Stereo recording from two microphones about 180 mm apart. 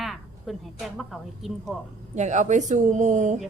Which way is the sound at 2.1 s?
40° right (ahead or behind).